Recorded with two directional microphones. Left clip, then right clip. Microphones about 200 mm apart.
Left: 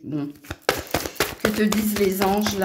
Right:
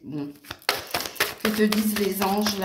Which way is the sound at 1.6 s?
45° left (ahead or behind).